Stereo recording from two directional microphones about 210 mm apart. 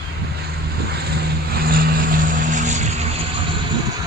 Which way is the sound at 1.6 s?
45° right (ahead or behind).